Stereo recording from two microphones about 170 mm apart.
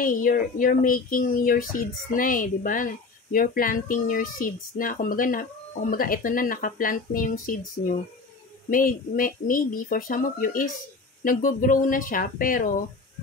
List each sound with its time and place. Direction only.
0.0 s speech: 55° left (ahead or behind)